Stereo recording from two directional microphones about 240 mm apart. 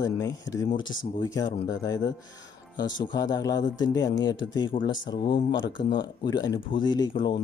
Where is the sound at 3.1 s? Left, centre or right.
Centre.